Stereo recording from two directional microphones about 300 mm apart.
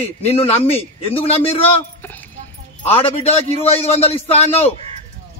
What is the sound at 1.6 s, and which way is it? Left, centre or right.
Speech, centre.